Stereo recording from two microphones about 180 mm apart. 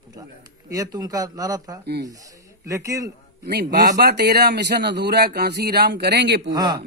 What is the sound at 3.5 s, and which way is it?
A man's voice, 65° right (ahead or behind).